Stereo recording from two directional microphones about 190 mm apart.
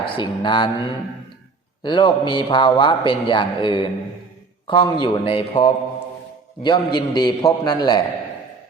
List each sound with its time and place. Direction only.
0.0 s a man's voice: 25° left (ahead or behind)